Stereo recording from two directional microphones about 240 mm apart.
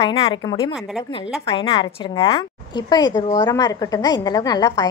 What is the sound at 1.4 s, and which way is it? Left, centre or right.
A woman's voice, left.